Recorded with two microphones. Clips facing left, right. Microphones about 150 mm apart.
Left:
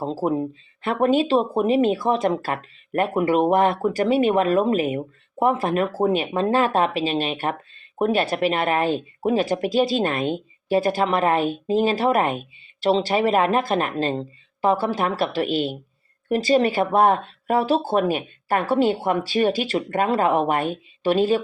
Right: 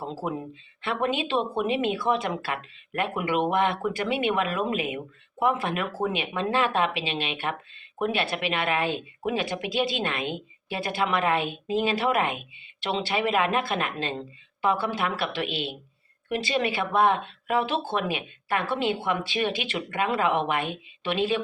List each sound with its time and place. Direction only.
0.0 s a woman's voice: 35° left (ahead or behind)